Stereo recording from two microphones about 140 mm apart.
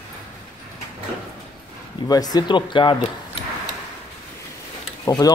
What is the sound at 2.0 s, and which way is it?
Speech, 25° left (ahead or behind).